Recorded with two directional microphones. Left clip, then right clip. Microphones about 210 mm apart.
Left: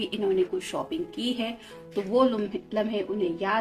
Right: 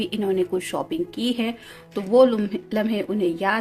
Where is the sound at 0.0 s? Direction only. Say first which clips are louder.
Right 2 dB; 45° right (ahead or behind).